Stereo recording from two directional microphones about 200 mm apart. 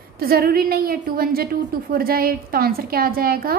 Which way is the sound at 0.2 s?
50° right (ahead or behind).